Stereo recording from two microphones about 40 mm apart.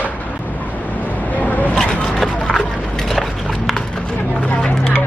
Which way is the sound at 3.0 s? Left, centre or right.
Centre.